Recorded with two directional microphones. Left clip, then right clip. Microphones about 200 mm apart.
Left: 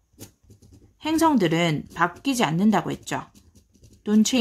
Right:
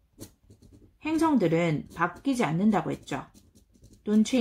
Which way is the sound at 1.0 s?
40° left (ahead or behind).